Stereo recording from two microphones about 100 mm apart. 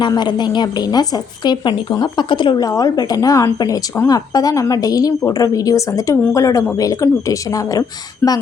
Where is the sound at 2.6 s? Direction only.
35° left (ahead or behind).